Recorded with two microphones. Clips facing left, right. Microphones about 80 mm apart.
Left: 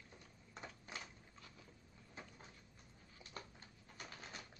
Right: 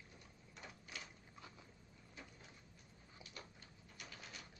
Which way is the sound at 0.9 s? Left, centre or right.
Left.